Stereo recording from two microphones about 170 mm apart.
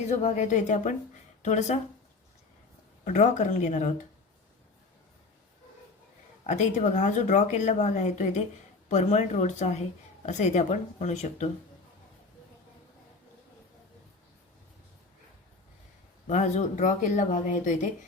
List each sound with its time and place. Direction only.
0.1 s speech: 45° left (ahead or behind)
3.0 s speech: 45° left (ahead or behind)
6.4 s speech: 45° left (ahead or behind)
16.2 s speech: 40° left (ahead or behind)